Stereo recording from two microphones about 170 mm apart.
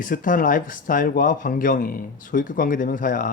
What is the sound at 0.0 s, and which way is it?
Speech, 50° left (ahead or behind).